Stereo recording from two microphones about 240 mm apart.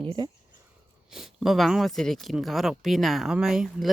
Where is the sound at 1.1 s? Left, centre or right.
Centre.